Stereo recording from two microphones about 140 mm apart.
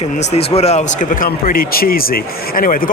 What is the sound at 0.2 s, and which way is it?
Speech, 50° left (ahead or behind).